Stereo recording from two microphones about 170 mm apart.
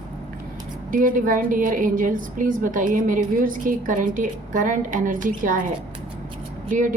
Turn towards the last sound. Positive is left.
turn(degrees=-50)  # may be behind; listen again after turning